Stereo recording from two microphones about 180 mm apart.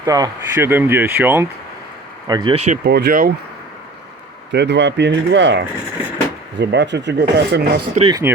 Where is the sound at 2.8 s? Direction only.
65° right (ahead or behind).